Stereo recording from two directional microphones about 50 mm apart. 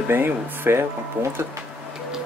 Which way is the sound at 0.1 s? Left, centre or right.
Right.